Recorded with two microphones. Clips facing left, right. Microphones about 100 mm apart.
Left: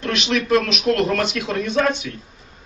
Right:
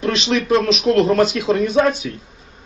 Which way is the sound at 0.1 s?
30° right (ahead or behind).